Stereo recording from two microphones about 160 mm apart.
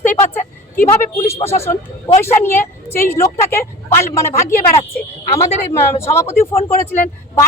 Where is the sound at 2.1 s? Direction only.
15° left (ahead or behind).